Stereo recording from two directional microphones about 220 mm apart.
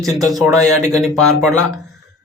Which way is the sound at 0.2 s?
15° right (ahead or behind).